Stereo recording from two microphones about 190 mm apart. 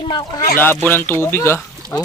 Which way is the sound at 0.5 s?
10° left (ahead or behind).